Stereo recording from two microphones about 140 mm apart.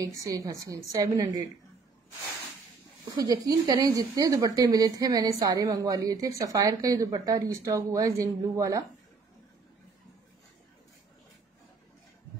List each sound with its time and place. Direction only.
0.0 s speech: 25° right (ahead or behind)
3.3 s speech: 25° right (ahead or behind)